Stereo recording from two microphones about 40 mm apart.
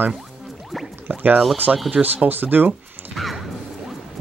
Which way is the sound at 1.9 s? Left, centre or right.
Right.